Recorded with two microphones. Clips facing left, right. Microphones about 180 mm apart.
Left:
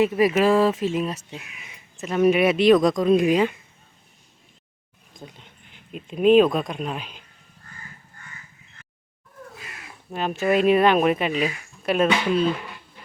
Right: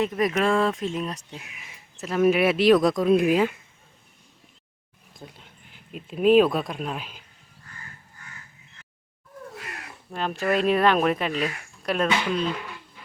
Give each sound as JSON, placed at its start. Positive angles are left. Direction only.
{"t": 0.0, "sound": "speech", "side_deg": 5}
{"t": 5.2, "sound": "speech", "side_deg": 0}
{"t": 9.6, "sound": "cat", "side_deg": -60}
{"t": 10.1, "sound": "speech", "side_deg": 5}